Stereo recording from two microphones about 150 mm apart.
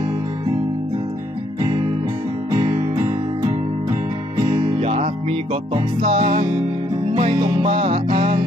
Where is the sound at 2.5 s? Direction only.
30° right (ahead or behind).